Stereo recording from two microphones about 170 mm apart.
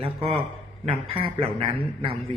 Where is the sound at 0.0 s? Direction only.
35° right (ahead or behind).